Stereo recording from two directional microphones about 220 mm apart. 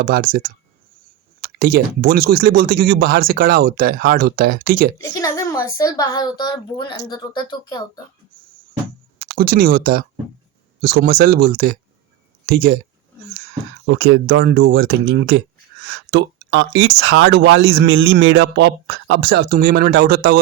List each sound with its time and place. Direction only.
0.0 s speech: 40° right (ahead or behind)
5.1 s speech: 15° left (ahead or behind)
9.1 s speech: 45° right (ahead or behind)
13.8 s speech: 60° right (ahead or behind)
14.4 s speech: 50° right (ahead or behind)